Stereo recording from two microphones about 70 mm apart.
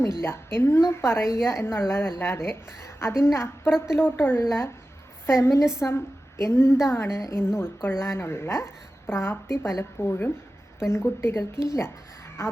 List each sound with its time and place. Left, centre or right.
0.2 s a woman's voice: left